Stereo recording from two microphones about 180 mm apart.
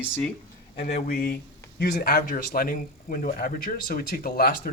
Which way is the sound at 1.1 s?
55° left (ahead or behind).